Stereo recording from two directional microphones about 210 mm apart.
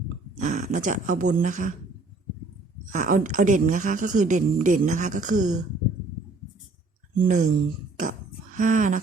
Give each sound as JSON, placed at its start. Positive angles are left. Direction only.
{"t": 0.3, "sound": "speech", "side_deg": -35}
{"t": 2.9, "sound": "speech", "side_deg": -40}
{"t": 7.2, "sound": "speech", "side_deg": -40}
{"t": 8.5, "sound": "speech", "side_deg": -35}